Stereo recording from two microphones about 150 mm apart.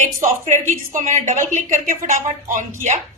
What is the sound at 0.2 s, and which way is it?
A woman's voice, 55° right (ahead or behind).